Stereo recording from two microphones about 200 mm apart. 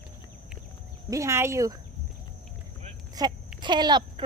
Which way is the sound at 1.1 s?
15° right (ahead or behind).